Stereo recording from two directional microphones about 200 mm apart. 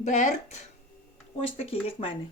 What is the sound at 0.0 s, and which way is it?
A woman's voice, 40° left (ahead or behind).